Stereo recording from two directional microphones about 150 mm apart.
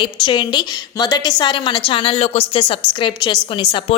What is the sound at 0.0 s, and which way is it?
A woman's voice, 30° left (ahead or behind).